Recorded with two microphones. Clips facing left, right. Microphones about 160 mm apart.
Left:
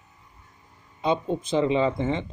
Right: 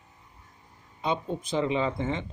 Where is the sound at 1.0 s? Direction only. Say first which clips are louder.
Left 5 dB; 30° left (ahead or behind).